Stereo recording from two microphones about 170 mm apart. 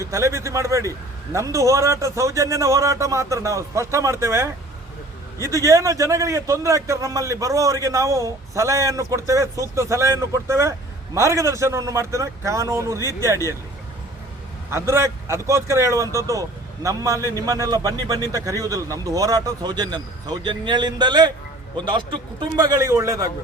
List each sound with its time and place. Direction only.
0.0 s a man's voice: 15° right (ahead or behind)
14.7 s a man's voice: 15° right (ahead or behind)